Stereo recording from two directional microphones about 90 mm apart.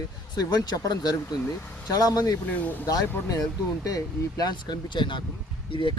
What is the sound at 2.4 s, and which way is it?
Speech, 15° left (ahead or behind).